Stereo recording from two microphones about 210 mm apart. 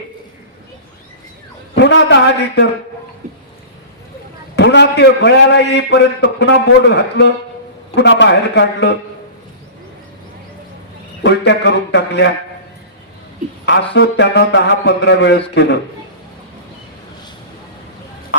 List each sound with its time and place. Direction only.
1.7 s a man's voice: 55° left (ahead or behind)
4.5 s a man's voice: 55° left (ahead or behind)
11.2 s a man's voice: 55° left (ahead or behind)
13.7 s a man's voice: 55° left (ahead or behind)